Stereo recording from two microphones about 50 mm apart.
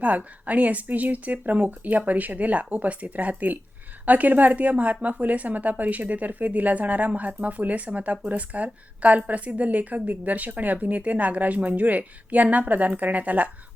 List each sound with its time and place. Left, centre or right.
0.0 s a woman's voice: right